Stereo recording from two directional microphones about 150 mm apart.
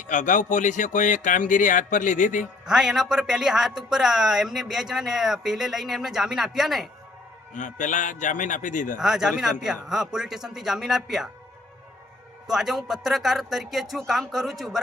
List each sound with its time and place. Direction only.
0.1 s speech: 55° left (ahead or behind)
2.6 s speech: 5° right (ahead or behind)
7.5 s speech: 55° left (ahead or behind)
9.0 s speech: centre (ahead or behind)
12.5 s speech: centre (ahead or behind)